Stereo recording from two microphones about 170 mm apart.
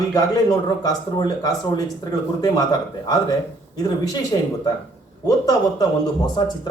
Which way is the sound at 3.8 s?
20° left (ahead or behind).